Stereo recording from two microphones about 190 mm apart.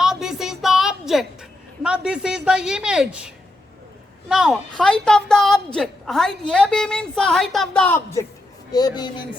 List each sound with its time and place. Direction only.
0.0 s a sound: centre (ahead or behind)
4.3 s a woman's voice: 5° right (ahead or behind)
8.7 s speech: 20° left (ahead or behind)